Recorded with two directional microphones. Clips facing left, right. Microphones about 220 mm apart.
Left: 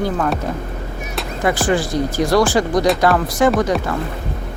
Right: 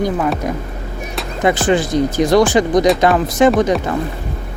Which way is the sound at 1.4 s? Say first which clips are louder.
Right 3 dB; 20° right (ahead or behind).